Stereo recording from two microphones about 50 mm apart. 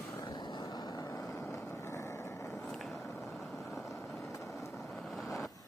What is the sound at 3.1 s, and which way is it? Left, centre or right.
Vehicle, left.